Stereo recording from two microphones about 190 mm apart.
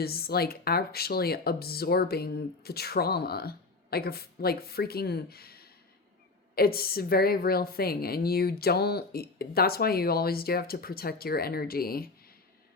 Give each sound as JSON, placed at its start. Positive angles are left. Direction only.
{"t": 0.0, "sound": "a woman's voice", "side_deg": 55}